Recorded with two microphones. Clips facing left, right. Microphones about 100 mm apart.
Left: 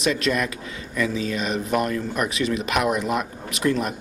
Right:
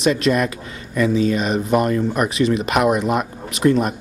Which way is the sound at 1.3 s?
40° right (ahead or behind).